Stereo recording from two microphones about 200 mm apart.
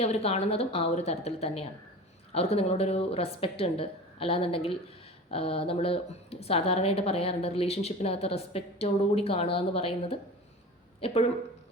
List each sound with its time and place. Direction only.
0.0 s a woman's voice: 30° left (ahead or behind)